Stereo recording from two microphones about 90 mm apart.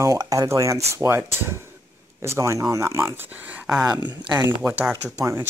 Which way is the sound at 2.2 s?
35° right (ahead or behind).